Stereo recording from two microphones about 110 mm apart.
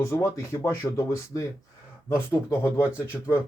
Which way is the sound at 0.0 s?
25° left (ahead or behind).